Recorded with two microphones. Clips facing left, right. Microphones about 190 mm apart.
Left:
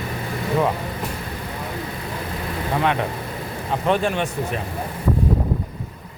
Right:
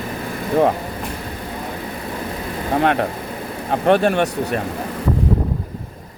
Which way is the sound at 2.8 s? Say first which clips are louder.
Right 4 dB; 45° right (ahead or behind).